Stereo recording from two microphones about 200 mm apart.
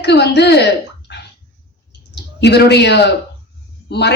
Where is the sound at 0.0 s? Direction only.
55° left (ahead or behind).